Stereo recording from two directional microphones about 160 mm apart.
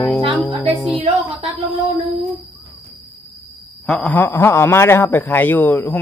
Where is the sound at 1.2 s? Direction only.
35° right (ahead or behind).